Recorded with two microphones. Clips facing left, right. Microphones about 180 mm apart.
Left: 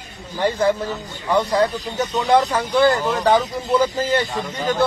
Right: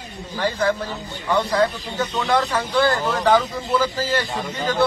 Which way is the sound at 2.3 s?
15° left (ahead or behind).